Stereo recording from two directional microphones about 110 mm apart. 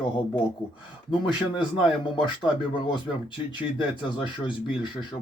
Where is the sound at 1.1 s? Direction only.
45° left (ahead or behind).